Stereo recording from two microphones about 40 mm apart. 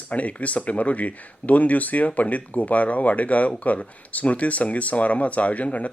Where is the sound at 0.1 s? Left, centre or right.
Left.